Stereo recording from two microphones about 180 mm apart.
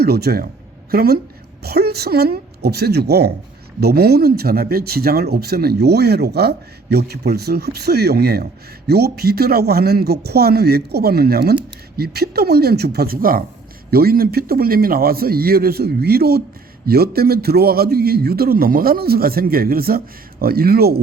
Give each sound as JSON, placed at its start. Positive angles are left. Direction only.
{"t": 0.0, "sound": "speech", "side_deg": -60}